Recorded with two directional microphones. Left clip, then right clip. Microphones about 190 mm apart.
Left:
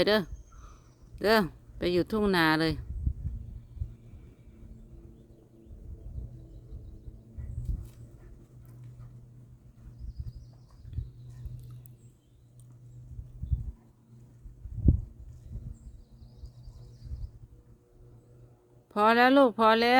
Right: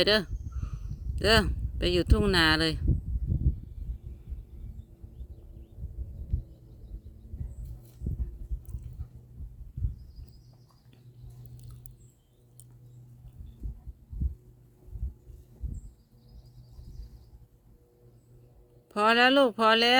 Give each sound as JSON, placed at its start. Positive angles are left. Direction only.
{"t": 0.0, "sound": "a sound", "side_deg": 10}
{"t": 1.2, "sound": "speech", "side_deg": 10}
{"t": 18.9, "sound": "speech", "side_deg": 10}